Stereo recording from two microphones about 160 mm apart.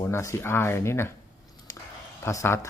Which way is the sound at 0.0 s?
15° left (ahead or behind).